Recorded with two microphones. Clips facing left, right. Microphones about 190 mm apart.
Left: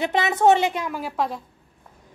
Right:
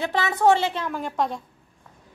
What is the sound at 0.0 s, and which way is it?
A woman's voice, 20° left (ahead or behind).